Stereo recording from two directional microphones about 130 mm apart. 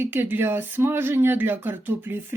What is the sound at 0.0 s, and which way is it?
Speech, 15° right (ahead or behind).